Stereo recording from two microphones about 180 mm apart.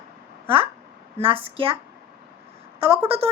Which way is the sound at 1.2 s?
30° right (ahead or behind).